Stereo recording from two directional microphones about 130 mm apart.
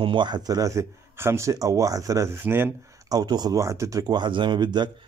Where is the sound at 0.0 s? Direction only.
35° right (ahead or behind); by 2.7 s 15° right (ahead or behind).